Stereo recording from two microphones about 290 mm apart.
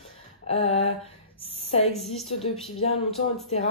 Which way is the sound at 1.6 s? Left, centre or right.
Left.